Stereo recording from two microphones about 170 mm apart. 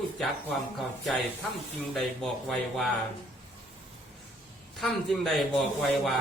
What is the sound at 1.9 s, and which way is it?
Speech, centre (ahead or behind).